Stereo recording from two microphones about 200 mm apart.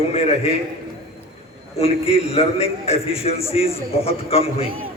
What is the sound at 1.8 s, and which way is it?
A man's voice, 30° left (ahead or behind).